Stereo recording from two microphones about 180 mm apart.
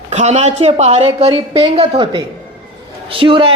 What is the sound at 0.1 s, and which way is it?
A woman's voice, 40° right (ahead or behind).